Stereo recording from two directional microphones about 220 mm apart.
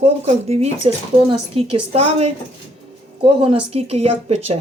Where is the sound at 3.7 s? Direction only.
25° right (ahead or behind).